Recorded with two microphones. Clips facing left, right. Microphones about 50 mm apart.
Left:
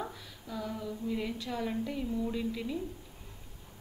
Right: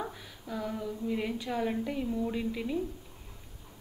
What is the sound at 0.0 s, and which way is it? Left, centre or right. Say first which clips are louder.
A woman's voice: right 2 dB; centre.